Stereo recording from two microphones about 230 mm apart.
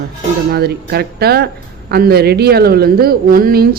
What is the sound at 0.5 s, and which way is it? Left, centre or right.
A woman's voice, right.